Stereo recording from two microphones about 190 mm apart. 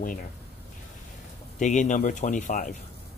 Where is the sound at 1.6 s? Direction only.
40° left (ahead or behind).